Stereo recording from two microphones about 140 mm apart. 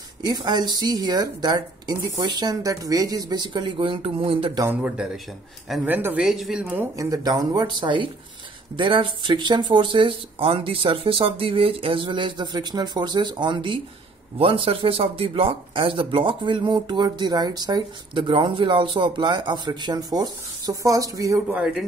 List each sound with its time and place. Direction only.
0.2 s speech: 30° right (ahead or behind)
4.6 s speech: 10° right (ahead or behind)
6.6 s speech: 15° right (ahead or behind)
7.1 s speech: 25° right (ahead or behind)